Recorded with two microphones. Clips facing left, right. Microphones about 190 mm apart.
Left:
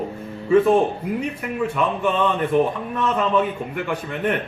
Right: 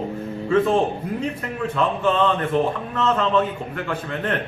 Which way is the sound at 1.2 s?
10° left (ahead or behind).